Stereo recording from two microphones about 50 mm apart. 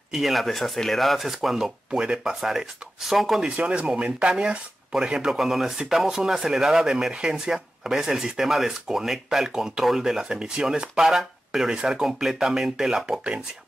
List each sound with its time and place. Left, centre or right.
0.1 s speech: centre
1.9 s speech: centre
3.3 s speech: right